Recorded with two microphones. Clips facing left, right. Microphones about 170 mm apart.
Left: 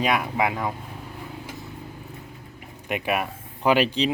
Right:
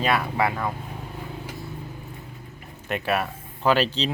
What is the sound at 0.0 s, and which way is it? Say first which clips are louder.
Speech: even; 15° left (ahead or behind).